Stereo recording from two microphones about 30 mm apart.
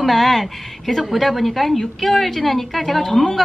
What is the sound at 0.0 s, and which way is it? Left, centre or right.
A woman's voice, centre.